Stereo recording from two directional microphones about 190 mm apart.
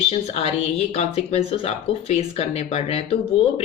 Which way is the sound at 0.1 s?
35° left (ahead or behind).